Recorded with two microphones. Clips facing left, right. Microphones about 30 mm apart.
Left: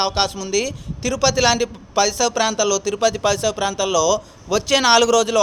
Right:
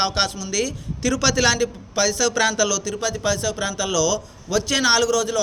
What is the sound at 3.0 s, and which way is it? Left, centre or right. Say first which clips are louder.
Speech: left 6 dB; left.